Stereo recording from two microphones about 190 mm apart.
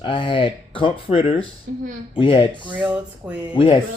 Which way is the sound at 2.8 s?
5° right (ahead or behind).